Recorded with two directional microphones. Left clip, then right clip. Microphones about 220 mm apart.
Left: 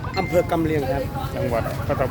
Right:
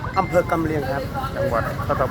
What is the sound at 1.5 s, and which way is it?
Speech, 15° left (ahead or behind).